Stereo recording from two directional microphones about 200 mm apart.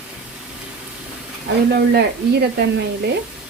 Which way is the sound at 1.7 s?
55° right (ahead or behind).